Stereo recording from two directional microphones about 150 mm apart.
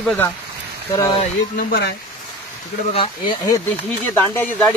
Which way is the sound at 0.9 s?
25° left (ahead or behind).